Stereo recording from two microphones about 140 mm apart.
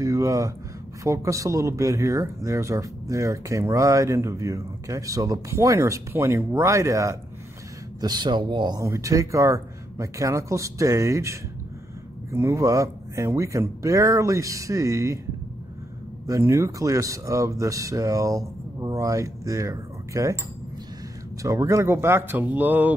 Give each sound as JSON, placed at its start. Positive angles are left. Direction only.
{"t": 0.0, "sound": "a sound", "side_deg": -20}
{"t": 1.0, "sound": "speech", "side_deg": -20}
{"t": 16.3, "sound": "speech", "side_deg": -20}
{"t": 21.4, "sound": "speech", "side_deg": -25}